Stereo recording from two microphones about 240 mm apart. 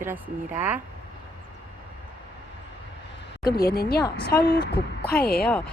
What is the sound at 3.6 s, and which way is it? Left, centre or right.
A woman's voice, left.